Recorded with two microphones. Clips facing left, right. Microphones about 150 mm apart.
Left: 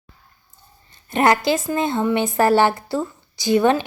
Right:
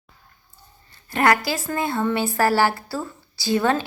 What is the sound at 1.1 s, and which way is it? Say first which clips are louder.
Speech: left 3 dB; 20° left (ahead or behind).